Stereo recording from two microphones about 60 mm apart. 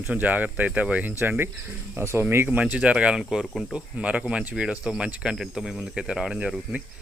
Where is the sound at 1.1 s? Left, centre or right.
Right.